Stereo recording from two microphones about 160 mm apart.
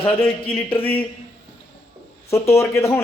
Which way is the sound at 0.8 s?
10° left (ahead or behind).